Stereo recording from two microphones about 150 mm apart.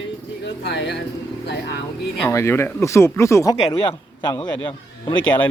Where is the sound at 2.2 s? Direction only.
15° left (ahead or behind).